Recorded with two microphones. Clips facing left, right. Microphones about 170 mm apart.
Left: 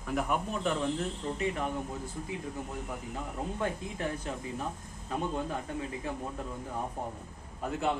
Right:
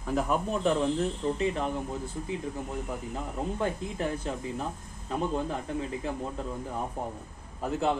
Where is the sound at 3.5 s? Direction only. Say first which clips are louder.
Right 3 dB; 30° right (ahead or behind).